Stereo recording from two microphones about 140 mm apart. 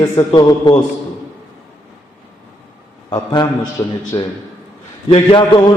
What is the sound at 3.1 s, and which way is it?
Chant, 30° left (ahead or behind).